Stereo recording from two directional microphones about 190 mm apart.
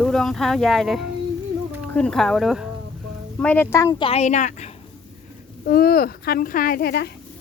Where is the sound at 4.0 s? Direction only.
35° left (ahead or behind).